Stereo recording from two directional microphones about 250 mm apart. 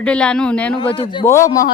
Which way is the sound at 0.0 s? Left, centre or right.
Centre.